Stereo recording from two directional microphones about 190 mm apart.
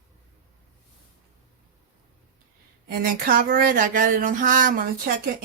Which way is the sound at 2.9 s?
45° right (ahead or behind).